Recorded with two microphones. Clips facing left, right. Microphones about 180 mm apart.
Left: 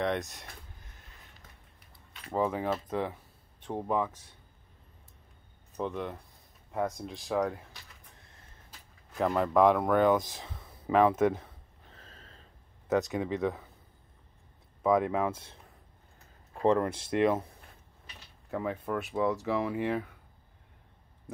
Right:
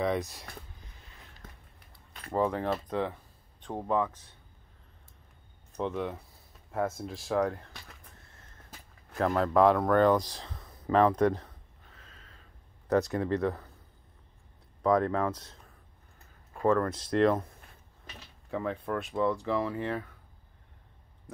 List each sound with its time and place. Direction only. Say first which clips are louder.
0.0 s speech: right 1 dB; centre (ahead or behind)
2.3 s speech: right 1 dB; 5° left (ahead or behind)
5.8 s speech: right 2 dB; centre (ahead or behind)
9.1 s speech: right 1 dB; centre (ahead or behind)
11.9 s snort: left 3 dB; 35° left (ahead or behind)
13.1 s speech: right 2 dB; centre (ahead or behind)
14.8 s speech: even; 5° left (ahead or behind)
16.6 s speech: even; 20° left (ahead or behind)
18.5 s speech: even; 5° left (ahead or behind)